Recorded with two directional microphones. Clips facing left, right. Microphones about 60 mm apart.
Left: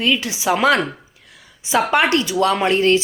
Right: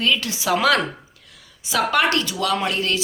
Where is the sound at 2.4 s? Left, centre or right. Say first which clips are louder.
Left 6 dB; left.